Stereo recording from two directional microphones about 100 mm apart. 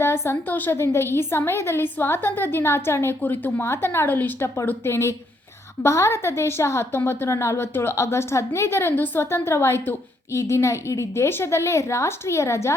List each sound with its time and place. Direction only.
0.0 s a woman's voice: 25° left (ahead or behind)